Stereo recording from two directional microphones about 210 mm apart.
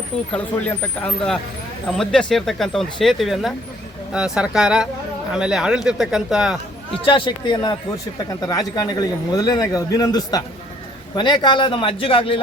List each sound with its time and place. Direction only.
0.3 s speech: 5° left (ahead or behind)
7.1 s a man's voice: 20° left (ahead or behind)